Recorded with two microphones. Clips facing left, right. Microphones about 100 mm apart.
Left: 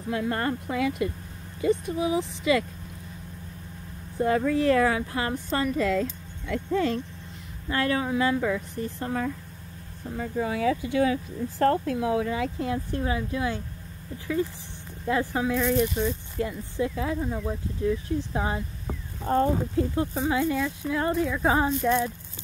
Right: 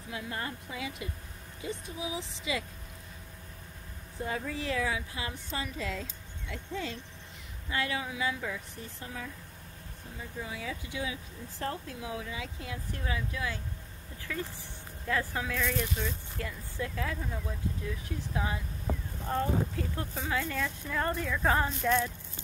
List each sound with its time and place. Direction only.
0.1 s a woman's voice: 60° left (ahead or behind)
4.2 s a woman's voice: 70° left (ahead or behind)
9.0 s a woman's voice: 55° left (ahead or behind); by 13.6 s 30° left (ahead or behind)
14.3 s speech: 20° left (ahead or behind); by 18.6 s 35° left (ahead or behind)
19.8 s speech: 20° left (ahead or behind)